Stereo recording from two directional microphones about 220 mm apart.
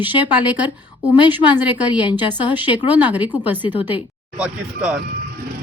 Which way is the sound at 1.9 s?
5° right (ahead or behind).